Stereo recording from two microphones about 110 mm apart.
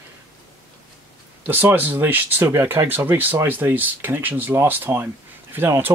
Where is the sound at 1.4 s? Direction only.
15° right (ahead or behind).